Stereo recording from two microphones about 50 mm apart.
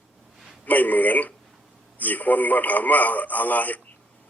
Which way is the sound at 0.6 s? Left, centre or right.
Left.